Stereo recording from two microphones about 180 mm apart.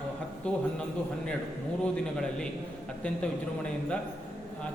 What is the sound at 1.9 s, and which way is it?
A man's voice, 5° left (ahead or behind).